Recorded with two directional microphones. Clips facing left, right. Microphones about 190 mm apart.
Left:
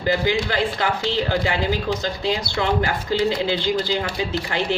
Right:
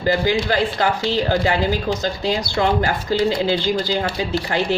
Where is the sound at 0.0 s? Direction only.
40° right (ahead or behind).